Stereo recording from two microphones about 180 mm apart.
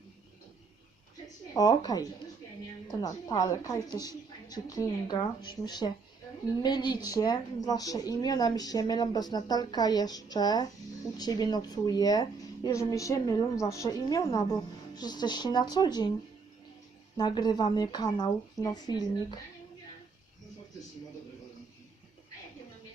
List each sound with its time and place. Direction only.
1.5 s speech: 20° left (ahead or behind)
17.2 s speech: 25° left (ahead or behind)